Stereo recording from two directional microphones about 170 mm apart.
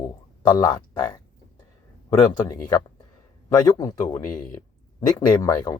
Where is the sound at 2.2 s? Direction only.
20° left (ahead or behind).